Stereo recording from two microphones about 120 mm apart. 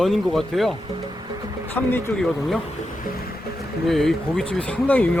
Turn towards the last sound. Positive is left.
turn(degrees=10)  # may be behind; listen again after turning